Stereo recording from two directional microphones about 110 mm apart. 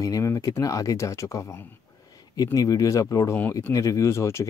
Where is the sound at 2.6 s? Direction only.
35° left (ahead or behind).